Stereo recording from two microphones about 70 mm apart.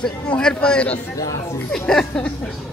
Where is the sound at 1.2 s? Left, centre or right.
Left.